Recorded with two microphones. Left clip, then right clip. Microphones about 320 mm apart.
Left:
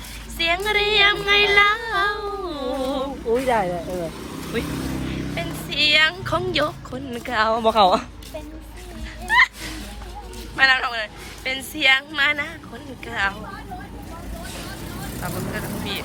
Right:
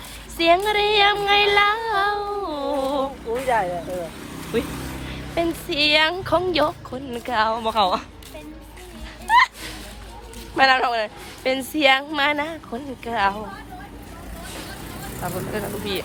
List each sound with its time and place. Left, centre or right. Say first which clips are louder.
0.3 s child singing: right 3 dB; centre
3.4 s speech: right 2 dB; left
4.5 s a woman's voice: right 1 dB; centre
9.2 s music: right 1 dB; centre
10.6 s a woman's voice: right 1 dB; centre
15.2 s a woman's voice: right 2 dB; centre